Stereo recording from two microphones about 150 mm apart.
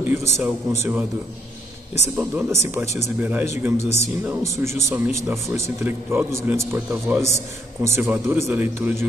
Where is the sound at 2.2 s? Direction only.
10° right (ahead or behind).